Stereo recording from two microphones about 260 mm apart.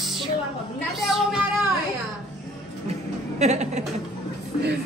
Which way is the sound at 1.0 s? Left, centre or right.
Centre.